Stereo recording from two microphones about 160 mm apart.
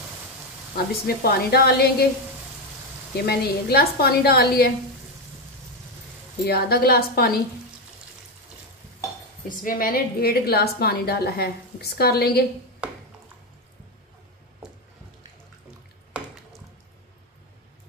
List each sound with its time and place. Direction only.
1.0 s a woman's voice: 75° left (ahead or behind)
3.3 s a woman's voice: 80° left
6.4 s a woman's voice: 75° left (ahead or behind)
9.5 s a woman's voice: 60° left (ahead or behind); by 12.4 s 80° left